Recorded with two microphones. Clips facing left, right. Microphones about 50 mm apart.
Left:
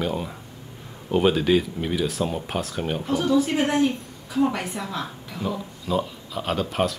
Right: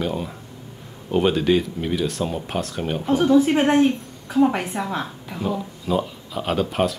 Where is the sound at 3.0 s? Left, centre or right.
Right.